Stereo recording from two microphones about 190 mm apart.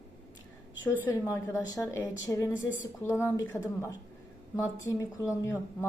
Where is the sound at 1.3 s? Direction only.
15° left (ahead or behind).